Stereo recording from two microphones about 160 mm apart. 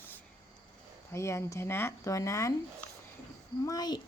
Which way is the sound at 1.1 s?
15° left (ahead or behind).